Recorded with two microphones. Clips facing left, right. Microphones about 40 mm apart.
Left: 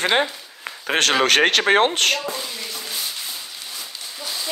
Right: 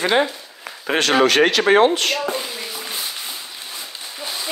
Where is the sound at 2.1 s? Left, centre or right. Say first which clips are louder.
Right 4 dB; right.